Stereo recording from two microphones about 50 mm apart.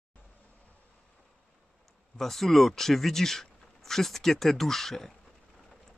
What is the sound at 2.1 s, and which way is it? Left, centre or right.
Speech, centre.